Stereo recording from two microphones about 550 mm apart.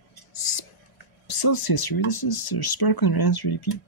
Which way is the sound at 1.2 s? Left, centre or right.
Left.